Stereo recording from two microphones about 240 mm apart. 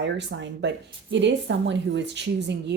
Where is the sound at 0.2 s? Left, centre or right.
Right.